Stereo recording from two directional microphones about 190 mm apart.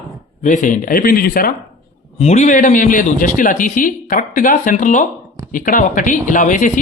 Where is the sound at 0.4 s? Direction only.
40° left (ahead or behind).